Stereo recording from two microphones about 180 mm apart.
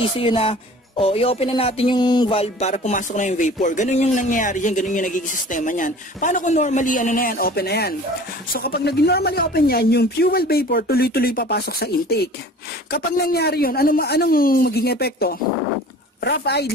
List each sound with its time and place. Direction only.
0.0 s a woman's voice: 30° left (ahead or behind); by 16.7 s 65° left (ahead or behind)